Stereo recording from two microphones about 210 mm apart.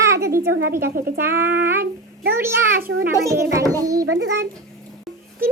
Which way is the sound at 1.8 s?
45° right (ahead or behind).